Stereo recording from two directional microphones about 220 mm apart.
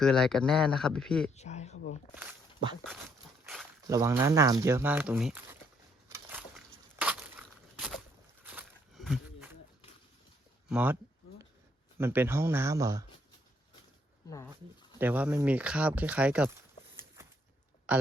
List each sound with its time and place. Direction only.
0.0 s speech: centre (ahead or behind)
1.4 s speech: 30° left (ahead or behind)
3.4 s a sound: centre (ahead or behind)
3.8 s speech: 15° right (ahead or behind)
6.1 s crushing: 15° right (ahead or behind)
6.9 s a sound: 5° right (ahead or behind)
10.7 s speech: 5° right (ahead or behind)
11.9 s speech: 10° right (ahead or behind)
14.9 s speech: 10° right (ahead or behind)
17.2 s a sound: 10° right (ahead or behind)
17.9 s speech: 5° right (ahead or behind)